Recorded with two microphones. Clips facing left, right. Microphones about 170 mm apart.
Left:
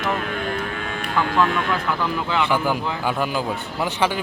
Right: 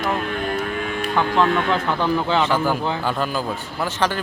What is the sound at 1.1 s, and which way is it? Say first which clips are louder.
Speech: right 1 dB; 25° right (ahead or behind).